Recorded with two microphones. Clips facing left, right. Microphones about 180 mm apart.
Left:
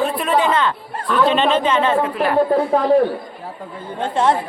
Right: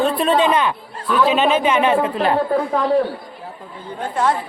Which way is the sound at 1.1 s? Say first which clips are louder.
Even; 5° right (ahead or behind).